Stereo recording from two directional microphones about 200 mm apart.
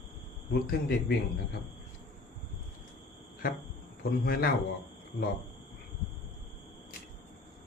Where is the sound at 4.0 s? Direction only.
50° left (ahead or behind).